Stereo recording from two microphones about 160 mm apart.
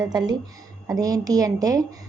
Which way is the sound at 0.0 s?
25° right (ahead or behind).